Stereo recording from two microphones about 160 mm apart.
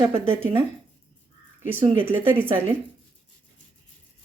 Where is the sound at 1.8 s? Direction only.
35° right (ahead or behind).